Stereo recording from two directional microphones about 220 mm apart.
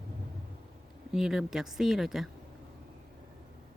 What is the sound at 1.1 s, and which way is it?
Speech, centre (ahead or behind).